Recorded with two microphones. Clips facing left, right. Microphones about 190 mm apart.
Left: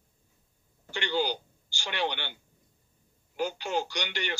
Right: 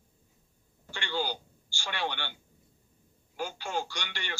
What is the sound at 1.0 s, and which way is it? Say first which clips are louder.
Speech: left 4 dB; 20° left (ahead or behind).